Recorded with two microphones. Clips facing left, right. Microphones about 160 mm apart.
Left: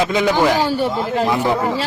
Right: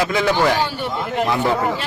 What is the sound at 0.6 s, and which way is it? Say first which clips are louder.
Speech: left 5 dB; 35° left (ahead or behind).